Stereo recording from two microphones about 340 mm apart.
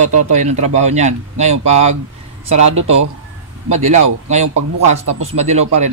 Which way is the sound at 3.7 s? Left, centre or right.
Centre.